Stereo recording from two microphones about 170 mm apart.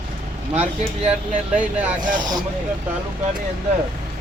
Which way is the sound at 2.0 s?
50° right (ahead or behind).